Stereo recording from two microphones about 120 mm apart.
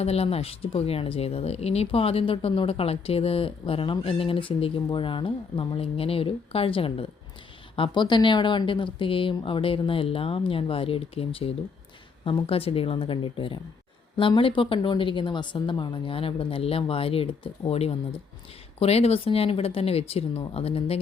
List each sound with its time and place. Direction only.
0.0 s a woman's voice: 60° left (ahead or behind)